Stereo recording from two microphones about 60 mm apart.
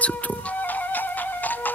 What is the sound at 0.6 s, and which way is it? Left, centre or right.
Music, left.